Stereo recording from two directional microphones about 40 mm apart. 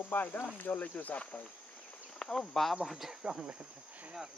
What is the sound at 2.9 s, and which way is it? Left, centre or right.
Speech, centre.